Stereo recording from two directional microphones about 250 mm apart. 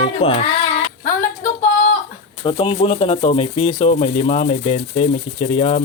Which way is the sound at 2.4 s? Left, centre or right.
Left.